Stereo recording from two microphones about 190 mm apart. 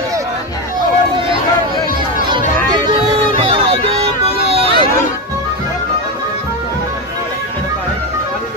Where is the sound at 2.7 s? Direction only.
25° right (ahead or behind).